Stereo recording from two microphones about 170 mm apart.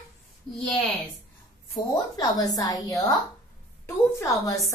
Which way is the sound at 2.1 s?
20° left (ahead or behind).